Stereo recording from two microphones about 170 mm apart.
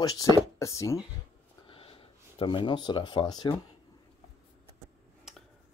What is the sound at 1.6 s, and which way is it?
Snort, 30° left (ahead or behind).